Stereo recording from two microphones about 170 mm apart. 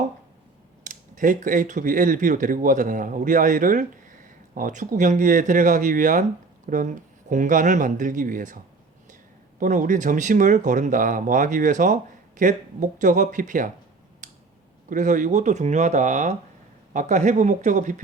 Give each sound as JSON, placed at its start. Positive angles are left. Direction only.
{"t": 0.9, "sound": "speech", "side_deg": -50}
{"t": 14.8, "sound": "speech", "side_deg": -45}